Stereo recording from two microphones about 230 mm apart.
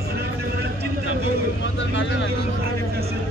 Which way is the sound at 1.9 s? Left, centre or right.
Left.